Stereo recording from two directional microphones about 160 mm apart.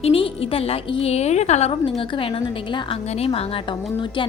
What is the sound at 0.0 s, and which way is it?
A woman's voice, 35° left (ahead or behind).